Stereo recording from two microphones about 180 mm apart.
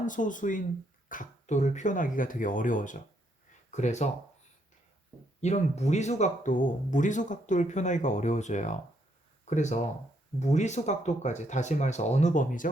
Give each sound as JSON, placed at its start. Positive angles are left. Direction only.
{"t": 0.0, "sound": "speech", "side_deg": 45}
{"t": 5.4, "sound": "speech", "side_deg": 40}